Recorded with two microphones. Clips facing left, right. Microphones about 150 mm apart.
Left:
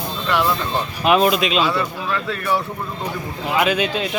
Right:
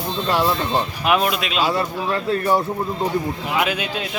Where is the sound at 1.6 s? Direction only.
35° right (ahead or behind).